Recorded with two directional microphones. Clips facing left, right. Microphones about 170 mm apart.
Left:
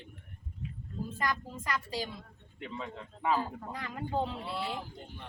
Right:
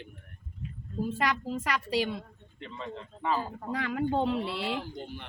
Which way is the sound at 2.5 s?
5° left (ahead or behind).